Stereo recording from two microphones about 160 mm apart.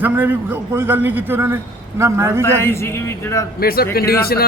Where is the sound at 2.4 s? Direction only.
15° left (ahead or behind).